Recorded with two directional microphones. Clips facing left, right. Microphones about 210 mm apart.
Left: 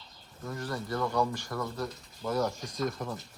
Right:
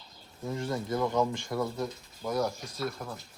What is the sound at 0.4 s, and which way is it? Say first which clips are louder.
Speech: right 3 dB; 25° right (ahead or behind).